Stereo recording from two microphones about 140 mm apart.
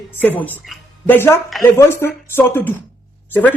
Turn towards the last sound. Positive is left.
turn(degrees=10)  # may be behind; listen again after turning